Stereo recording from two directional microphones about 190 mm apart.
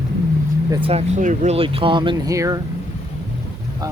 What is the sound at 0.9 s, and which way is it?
Speech, 35° right (ahead or behind).